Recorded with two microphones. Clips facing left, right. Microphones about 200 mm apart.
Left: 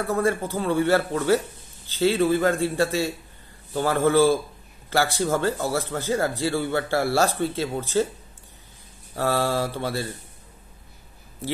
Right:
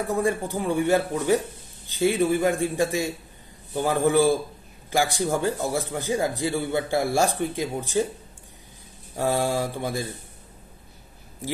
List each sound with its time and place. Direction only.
0.0 s speech: 15° right (ahead or behind)
9.1 s speech: 15° right (ahead or behind)